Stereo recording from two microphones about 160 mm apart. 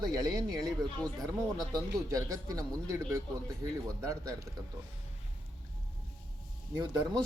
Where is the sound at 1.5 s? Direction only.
20° right (ahead or behind).